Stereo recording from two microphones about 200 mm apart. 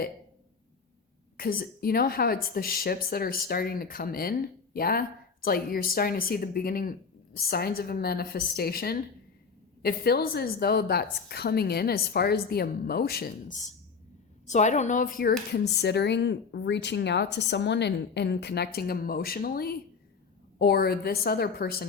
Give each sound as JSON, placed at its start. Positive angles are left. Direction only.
{"t": 1.4, "sound": "speech", "side_deg": 50}